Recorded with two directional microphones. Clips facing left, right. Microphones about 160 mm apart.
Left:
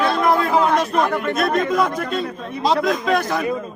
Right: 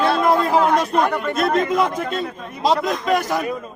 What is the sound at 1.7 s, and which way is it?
Speech, 25° right (ahead or behind).